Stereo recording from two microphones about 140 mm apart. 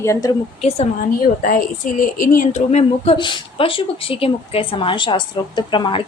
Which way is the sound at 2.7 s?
50° left (ahead or behind).